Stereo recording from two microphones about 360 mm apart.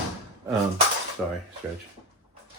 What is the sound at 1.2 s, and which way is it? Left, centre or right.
Speech, centre.